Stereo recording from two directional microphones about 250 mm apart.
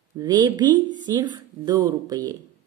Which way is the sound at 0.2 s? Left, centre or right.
Centre.